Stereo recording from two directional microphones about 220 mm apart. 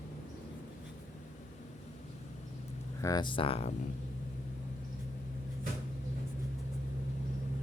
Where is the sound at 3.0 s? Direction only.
20° left (ahead or behind).